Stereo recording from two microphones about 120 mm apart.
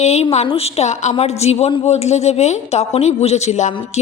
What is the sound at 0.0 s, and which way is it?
Speech, 65° left (ahead or behind).